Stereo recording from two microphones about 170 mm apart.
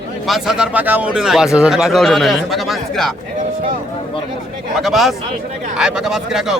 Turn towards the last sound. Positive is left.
turn(degrees=-5)  # may be behind; listen again after turning